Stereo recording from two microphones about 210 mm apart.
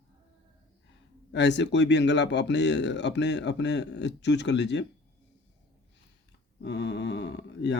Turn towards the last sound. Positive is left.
turn(degrees=55)  # may be behind; listen again after turning